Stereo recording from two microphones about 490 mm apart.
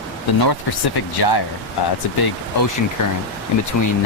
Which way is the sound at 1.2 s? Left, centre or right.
Left.